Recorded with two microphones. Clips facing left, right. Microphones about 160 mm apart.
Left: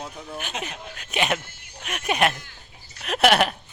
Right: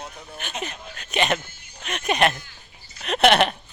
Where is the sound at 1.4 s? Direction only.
70° left (ahead or behind).